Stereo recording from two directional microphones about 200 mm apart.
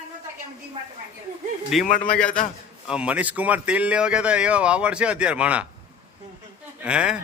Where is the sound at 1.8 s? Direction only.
40° left (ahead or behind).